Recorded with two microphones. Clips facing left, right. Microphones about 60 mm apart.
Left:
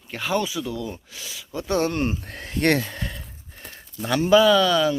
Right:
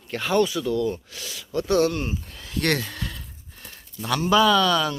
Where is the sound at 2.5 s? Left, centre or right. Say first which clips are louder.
Left 3 dB; left.